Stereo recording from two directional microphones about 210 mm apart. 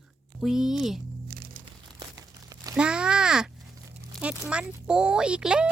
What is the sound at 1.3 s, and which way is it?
Music, 45° right (ahead or behind).